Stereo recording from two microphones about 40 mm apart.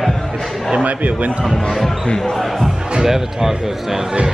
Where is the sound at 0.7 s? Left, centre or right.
Right.